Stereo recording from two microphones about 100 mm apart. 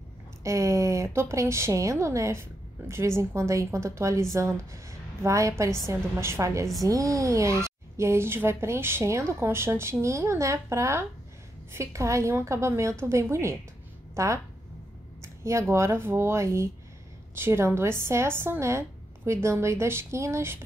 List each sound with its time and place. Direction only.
0.4 s a woman's voice: 30° right (ahead or behind)
15.2 s a sound: 30° right (ahead or behind)
15.7 s a woman's voice: 30° right (ahead or behind)